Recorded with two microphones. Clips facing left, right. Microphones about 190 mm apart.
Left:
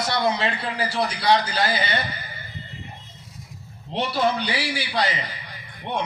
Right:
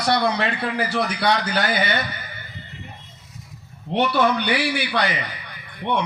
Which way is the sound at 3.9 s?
60° right (ahead or behind).